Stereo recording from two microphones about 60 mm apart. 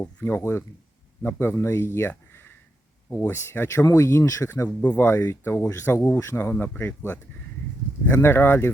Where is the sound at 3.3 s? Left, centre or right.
Left.